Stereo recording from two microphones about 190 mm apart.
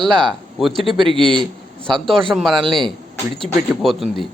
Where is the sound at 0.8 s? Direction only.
25° right (ahead or behind).